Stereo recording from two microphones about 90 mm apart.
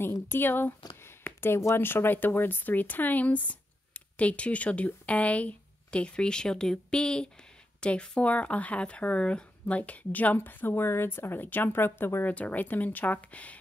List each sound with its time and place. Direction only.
0.0 s speech: 25° left (ahead or behind)